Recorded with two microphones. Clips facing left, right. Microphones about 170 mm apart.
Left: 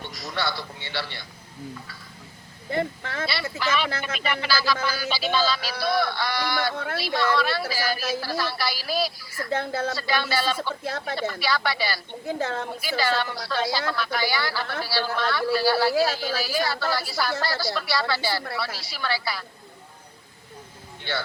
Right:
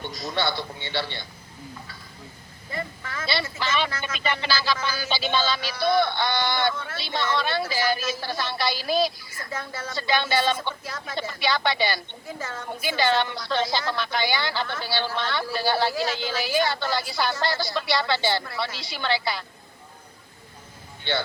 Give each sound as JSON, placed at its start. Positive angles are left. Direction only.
{"t": 0.1, "sound": "a man's voice", "side_deg": -25}
{"t": 2.6, "sound": "speech", "side_deg": 65}
{"t": 3.6, "sound": "a woman's voice", "side_deg": -25}
{"t": 6.7, "sound": "speech", "side_deg": 60}
{"t": 7.0, "sound": "a woman's voice", "side_deg": -20}
{"t": 9.5, "sound": "speech", "side_deg": 60}
{"t": 9.9, "sound": "a woman's voice", "side_deg": -20}
{"t": 12.3, "sound": "speech", "side_deg": 65}
{"t": 12.8, "sound": "a woman's voice", "side_deg": -25}
{"t": 21.0, "sound": "speech", "side_deg": -25}